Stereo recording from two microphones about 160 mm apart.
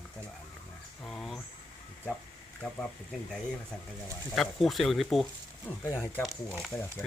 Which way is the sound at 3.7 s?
5° left (ahead or behind).